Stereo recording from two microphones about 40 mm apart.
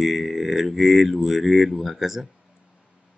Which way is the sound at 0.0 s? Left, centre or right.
Centre.